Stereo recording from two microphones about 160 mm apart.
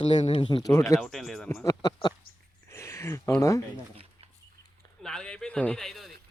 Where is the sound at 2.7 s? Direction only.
20° left (ahead or behind).